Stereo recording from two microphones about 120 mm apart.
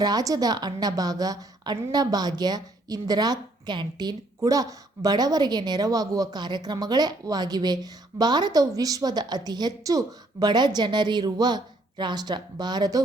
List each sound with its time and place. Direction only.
0.0 s a woman's voice: 30° right (ahead or behind)